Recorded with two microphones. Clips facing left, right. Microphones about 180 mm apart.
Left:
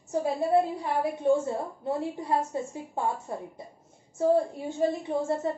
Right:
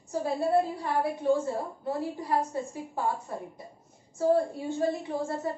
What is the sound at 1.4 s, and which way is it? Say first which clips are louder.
A woman's voice: left 1 dB; 20° left (ahead or behind).